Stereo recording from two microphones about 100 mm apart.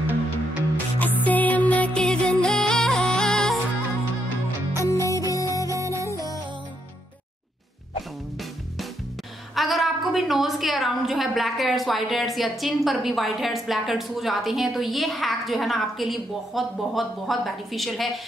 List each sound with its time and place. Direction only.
0.9 s music: 15° left (ahead or behind)
4.7 s music: 30° left (ahead or behind)
5.7 s music: 30° right (ahead or behind)
9.6 s a woman's voice: centre (ahead or behind)